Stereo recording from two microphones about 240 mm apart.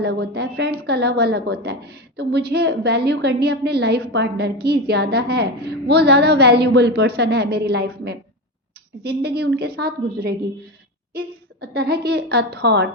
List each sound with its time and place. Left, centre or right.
0.0 s a woman's voice: right
11.6 s a woman's voice: right